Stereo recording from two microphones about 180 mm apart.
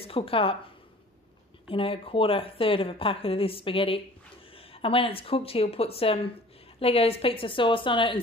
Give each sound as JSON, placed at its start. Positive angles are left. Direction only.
{"t": 0.0, "sound": "speech", "side_deg": 30}
{"t": 1.7, "sound": "a woman's voice", "side_deg": 30}